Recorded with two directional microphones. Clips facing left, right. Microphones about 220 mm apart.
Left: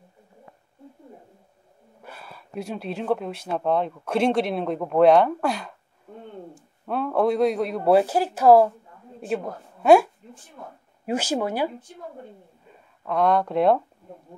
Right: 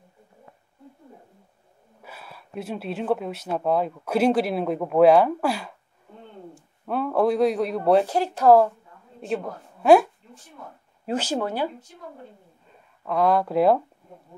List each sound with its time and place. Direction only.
2.0 s speech: 5° right (ahead or behind)
6.9 s a woman's voice: centre (ahead or behind)
11.1 s speech: 10° left (ahead or behind)
13.0 s speech: centre (ahead or behind)